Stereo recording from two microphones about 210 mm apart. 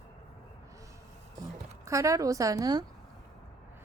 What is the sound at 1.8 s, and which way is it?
A woman's voice, 15° right (ahead or behind).